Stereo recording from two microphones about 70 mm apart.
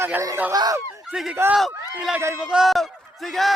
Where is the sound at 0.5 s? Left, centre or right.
Right.